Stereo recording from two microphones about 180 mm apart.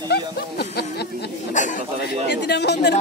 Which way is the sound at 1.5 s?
45° left (ahead or behind).